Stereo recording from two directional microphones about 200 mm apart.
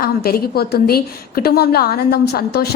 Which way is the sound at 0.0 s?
50° left (ahead or behind).